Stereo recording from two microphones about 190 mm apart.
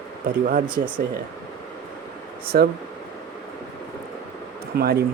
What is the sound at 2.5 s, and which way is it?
Speech, 55° right (ahead or behind).